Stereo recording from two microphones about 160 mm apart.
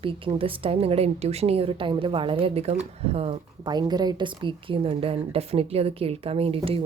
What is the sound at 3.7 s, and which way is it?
A woman's voice, 25° right (ahead or behind).